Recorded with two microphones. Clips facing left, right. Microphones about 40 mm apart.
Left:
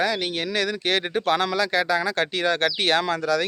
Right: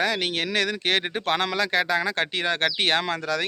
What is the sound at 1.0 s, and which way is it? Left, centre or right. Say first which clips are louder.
Speech: left 3 dB; right.